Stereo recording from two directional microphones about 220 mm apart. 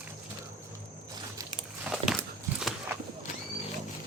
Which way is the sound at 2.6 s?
5° right (ahead or behind).